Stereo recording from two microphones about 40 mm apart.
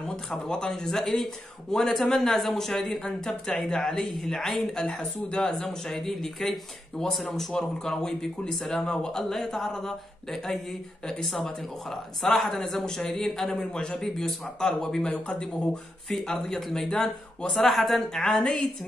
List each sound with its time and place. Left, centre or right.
0.7 s speech: centre
13.7 s a man's voice: centre
15.1 s a man's voice: left
16.3 s speech: centre
18.2 s speech: centre